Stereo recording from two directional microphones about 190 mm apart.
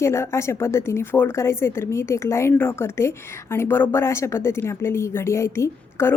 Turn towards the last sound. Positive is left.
turn(degrees=15)  # may be behind; listen again after turning